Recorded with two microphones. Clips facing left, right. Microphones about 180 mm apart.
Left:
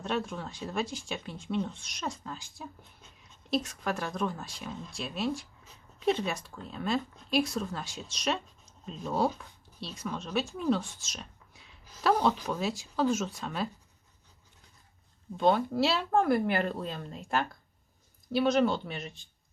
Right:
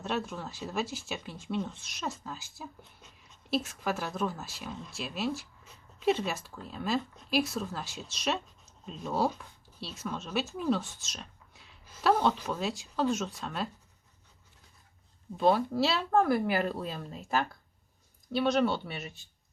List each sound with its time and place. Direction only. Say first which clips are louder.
0.0 s speech: left 1 dB; 5° right (ahead or behind)
15.4 s speech: even; 5° right (ahead or behind)